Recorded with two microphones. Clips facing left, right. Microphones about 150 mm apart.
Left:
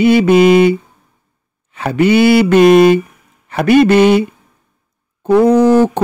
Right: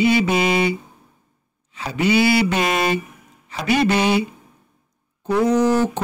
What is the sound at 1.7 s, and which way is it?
Speech, 55° left (ahead or behind).